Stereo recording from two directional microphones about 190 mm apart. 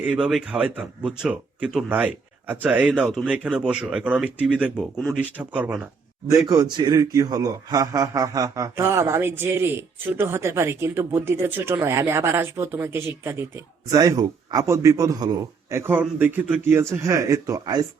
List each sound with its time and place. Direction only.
0.0 s a man's voice: 5° right (ahead or behind)